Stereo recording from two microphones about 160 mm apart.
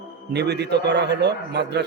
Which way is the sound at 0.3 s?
90° right.